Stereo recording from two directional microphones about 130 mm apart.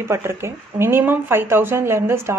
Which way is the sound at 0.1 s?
20° right (ahead or behind).